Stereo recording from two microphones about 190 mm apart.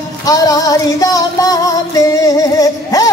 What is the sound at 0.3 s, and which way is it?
Music, 20° left (ahead or behind).